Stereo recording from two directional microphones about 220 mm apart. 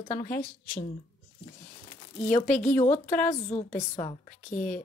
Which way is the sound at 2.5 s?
5° left (ahead or behind).